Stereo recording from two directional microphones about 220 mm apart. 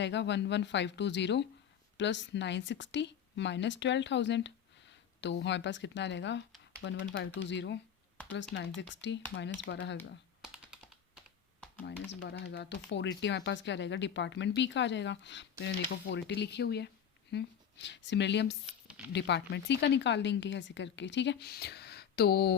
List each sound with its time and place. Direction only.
0.0 s speech: 55° left (ahead or behind)
10.4 s computer keyboard: 5° right (ahead or behind)
12.3 s speech: 50° left (ahead or behind)
18.6 s a sound: 5° right (ahead or behind)
19.1 s speech: 50° left (ahead or behind)